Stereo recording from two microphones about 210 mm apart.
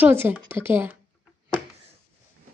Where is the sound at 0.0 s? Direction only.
10° right (ahead or behind).